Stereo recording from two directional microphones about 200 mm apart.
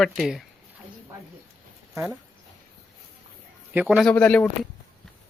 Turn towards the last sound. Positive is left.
turn(degrees=5)  # may be behind; listen again after turning